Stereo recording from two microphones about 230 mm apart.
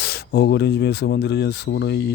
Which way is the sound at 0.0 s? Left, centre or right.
Left.